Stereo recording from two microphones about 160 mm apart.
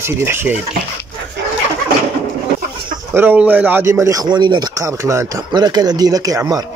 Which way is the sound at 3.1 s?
10° right (ahead or behind).